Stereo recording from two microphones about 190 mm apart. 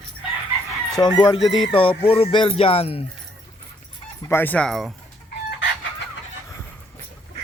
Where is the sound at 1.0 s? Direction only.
20° left (ahead or behind).